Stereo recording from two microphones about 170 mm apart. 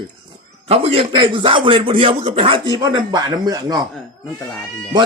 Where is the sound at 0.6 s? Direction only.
35° right (ahead or behind).